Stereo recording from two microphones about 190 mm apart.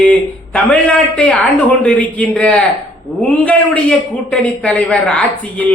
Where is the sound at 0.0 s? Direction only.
5° left (ahead or behind).